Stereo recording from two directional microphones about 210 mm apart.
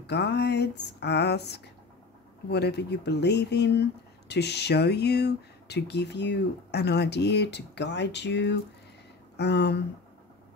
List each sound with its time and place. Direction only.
0.0 s speech: 50° left (ahead or behind)